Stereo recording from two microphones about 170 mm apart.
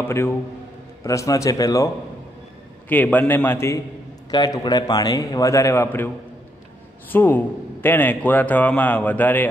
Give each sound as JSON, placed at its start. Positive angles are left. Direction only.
{"t": 0.0, "sound": "a man's voice", "side_deg": 15}
{"t": 2.9, "sound": "a man's voice", "side_deg": 10}